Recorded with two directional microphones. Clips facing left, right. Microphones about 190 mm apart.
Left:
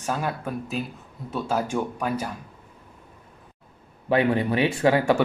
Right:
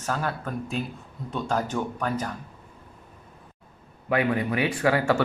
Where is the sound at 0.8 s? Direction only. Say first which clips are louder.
Even; 5° left (ahead or behind).